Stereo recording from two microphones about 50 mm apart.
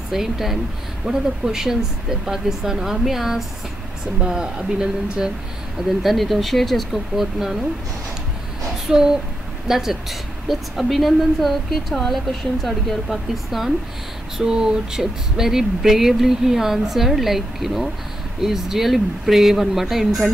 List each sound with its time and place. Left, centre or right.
0.1 s a woman's voice: centre
4.3 s speech: centre
5.8 s a woman's voice: centre
8.8 s a woman's voice: centre